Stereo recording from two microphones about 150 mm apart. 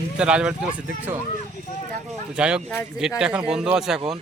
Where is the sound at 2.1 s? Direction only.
5° right (ahead or behind).